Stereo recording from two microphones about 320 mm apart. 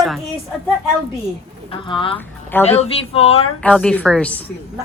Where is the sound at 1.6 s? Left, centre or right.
Centre.